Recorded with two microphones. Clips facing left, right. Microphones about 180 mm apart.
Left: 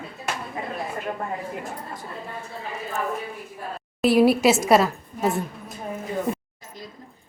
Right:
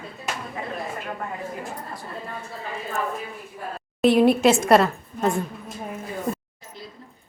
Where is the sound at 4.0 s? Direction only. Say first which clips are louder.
Right 1 dB; 5° left (ahead or behind).